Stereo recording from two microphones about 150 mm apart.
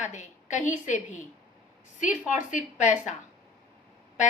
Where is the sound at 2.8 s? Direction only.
50° left (ahead or behind).